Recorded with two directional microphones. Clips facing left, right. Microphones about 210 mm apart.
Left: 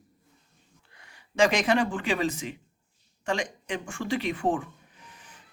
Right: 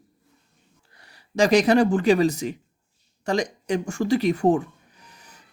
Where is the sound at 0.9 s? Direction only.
35° right (ahead or behind).